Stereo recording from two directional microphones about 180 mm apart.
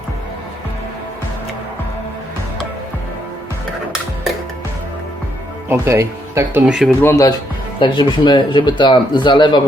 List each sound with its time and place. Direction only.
5.6 s speech: 15° right (ahead or behind)
7.0 s speech: 10° left (ahead or behind)
7.8 s speech: 25° left (ahead or behind)